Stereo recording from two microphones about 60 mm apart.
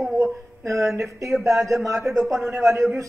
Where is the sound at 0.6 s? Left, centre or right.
Right.